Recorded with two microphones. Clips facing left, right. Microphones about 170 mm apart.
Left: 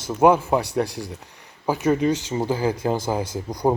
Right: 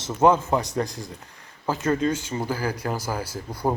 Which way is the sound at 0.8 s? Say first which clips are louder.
Left 4 dB; 70° left (ahead or behind).